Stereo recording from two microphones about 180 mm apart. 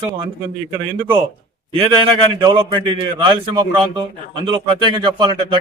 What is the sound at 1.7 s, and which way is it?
A man's voice, 30° right (ahead or behind).